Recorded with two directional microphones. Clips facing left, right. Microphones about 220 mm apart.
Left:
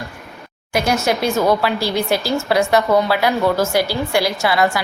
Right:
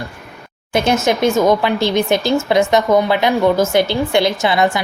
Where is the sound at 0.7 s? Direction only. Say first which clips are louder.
Right 3 dB; 25° right (ahead or behind).